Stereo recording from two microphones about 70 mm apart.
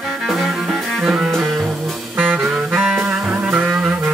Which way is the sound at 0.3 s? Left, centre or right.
Centre.